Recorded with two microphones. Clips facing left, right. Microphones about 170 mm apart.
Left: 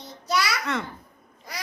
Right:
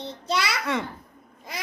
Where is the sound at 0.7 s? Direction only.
15° right (ahead or behind).